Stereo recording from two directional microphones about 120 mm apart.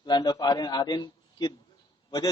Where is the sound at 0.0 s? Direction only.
35° left (ahead or behind).